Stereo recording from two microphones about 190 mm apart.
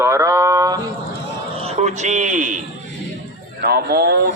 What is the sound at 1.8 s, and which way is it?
Speech, 40° right (ahead or behind).